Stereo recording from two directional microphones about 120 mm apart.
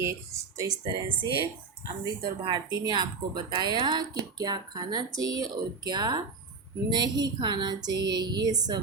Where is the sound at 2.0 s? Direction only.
35° right (ahead or behind).